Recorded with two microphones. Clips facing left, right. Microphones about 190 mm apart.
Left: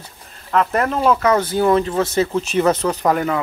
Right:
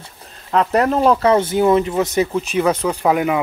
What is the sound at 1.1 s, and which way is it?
Speech, 25° right (ahead or behind).